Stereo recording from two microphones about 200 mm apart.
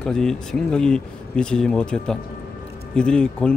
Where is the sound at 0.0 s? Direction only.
5° left (ahead or behind).